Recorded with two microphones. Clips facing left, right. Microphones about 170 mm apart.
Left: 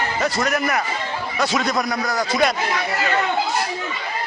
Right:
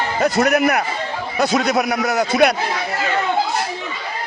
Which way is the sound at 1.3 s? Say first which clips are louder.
Right 4 dB; 40° right (ahead or behind).